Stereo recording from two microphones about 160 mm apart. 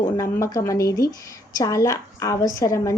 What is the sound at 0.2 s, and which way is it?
A woman's voice, 20° left (ahead or behind).